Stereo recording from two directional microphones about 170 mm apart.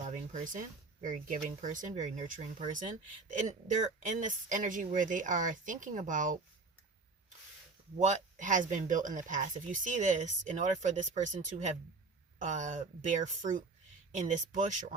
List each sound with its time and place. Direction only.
0.0 s a sound: 45° right (ahead or behind)
1.0 s speech: 50° right (ahead or behind)
7.9 s speech: 45° right (ahead or behind)